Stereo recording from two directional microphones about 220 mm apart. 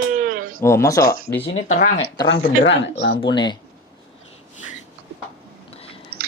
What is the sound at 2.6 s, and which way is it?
Speech, 55° left (ahead or behind).